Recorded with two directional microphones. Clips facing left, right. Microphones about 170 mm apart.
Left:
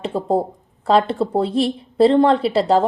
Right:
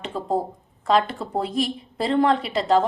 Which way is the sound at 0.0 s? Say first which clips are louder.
Left 6 dB; 35° left (ahead or behind).